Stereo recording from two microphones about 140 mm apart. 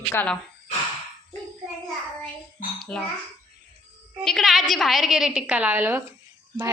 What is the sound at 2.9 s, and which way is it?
Speech, 5° left (ahead or behind).